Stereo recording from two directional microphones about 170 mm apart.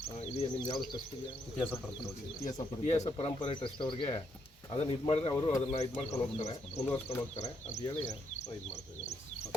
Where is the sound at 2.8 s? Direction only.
40° left (ahead or behind).